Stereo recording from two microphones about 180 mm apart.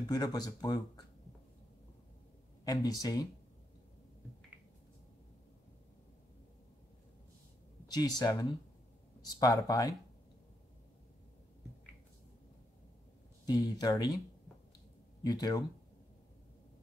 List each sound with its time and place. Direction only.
0.1 s speech: 20° left (ahead or behind)
2.6 s speech: 20° left (ahead or behind)
7.9 s speech: 20° left (ahead or behind)
13.5 s speech: 20° left (ahead or behind)
15.2 s speech: 20° left (ahead or behind)